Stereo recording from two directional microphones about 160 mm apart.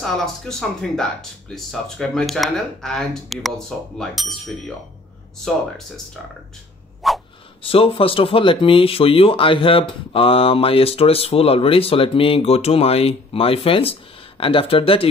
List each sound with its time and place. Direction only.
0.0 s speech: 5° left (ahead or behind)
7.0 s a sound: centre (ahead or behind)
7.6 s speech: 35° left (ahead or behind)